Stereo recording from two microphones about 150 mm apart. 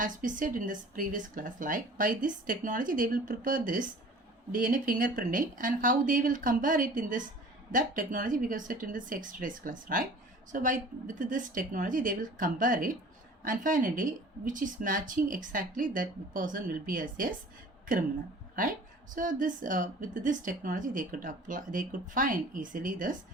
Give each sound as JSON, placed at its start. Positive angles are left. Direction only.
{"t": 0.0, "sound": "a woman's voice", "side_deg": -60}
{"t": 19.1, "sound": "a woman's voice", "side_deg": -60}